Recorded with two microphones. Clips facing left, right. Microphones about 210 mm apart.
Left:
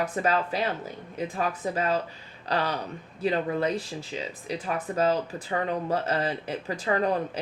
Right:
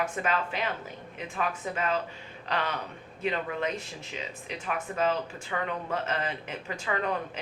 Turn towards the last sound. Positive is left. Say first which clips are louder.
# left 5 dB
turn(degrees=35)  # may be behind; listen again after turning